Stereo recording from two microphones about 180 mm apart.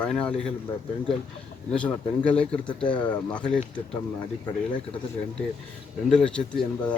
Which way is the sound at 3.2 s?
5° left (ahead or behind).